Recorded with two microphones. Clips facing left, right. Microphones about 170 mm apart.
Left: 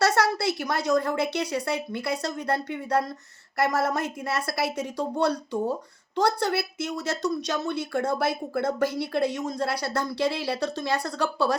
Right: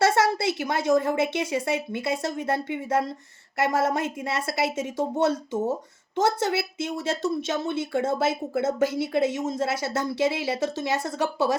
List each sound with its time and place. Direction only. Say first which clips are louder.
0.0 s a woman's voice: right 1 dB; 25° right (ahead or behind)